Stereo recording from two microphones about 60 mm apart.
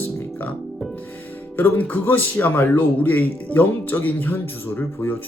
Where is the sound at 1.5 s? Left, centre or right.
Left.